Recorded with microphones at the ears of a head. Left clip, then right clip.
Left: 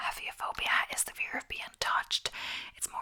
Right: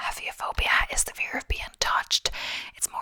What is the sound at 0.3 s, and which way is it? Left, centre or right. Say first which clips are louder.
Whispering: right 8 dB; right.